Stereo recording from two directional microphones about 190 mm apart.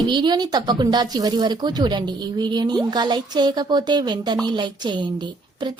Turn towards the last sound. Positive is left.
turn(degrees=-25)  # may be behind; listen again after turning